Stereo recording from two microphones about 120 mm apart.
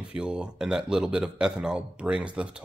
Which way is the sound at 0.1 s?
5° right (ahead or behind).